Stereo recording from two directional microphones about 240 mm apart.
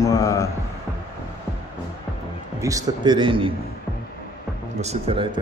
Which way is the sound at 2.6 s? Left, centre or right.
Centre.